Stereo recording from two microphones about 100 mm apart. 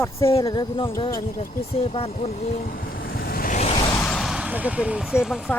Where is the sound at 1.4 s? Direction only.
80° left.